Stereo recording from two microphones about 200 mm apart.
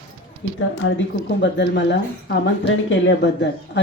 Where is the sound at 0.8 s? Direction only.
70° left (ahead or behind).